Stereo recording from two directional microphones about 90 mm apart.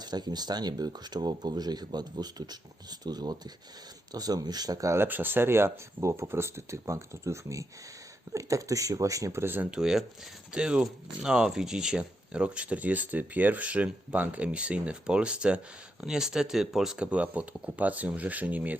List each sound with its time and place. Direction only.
0.0 s speech: 50° right (ahead or behind)
5.0 s speech: 20° right (ahead or behind)
9.7 s speech: 5° right (ahead or behind)